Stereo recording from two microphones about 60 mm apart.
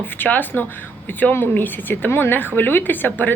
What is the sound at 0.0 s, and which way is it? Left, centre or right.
A woman's voice, left.